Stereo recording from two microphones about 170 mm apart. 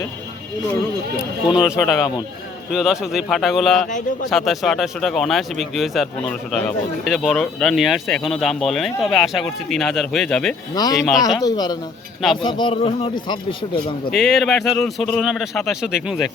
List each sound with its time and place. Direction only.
1.5 s speech: 5° right (ahead or behind)
3.8 s a man's voice: 50° left (ahead or behind)
4.3 s speech: centre (ahead or behind)
10.8 s speech: 20° left (ahead or behind)
14.1 s speech: centre (ahead or behind)